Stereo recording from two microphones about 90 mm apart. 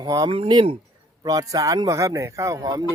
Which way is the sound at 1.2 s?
45° right (ahead or behind).